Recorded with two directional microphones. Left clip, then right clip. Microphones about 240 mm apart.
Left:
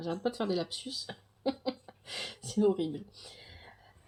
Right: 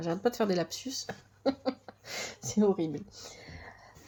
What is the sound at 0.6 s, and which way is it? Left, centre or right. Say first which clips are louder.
Speech: even; centre.